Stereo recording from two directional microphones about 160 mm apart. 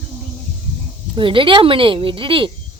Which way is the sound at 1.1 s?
30° right (ahead or behind).